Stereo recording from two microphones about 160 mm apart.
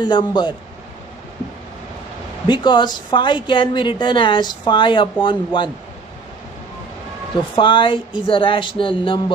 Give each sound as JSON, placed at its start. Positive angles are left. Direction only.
{"t": 0.0, "sound": "a man's voice", "side_deg": 30}
{"t": 2.4, "sound": "a woman's voice", "side_deg": 30}
{"t": 7.5, "sound": "a woman's voice", "side_deg": 30}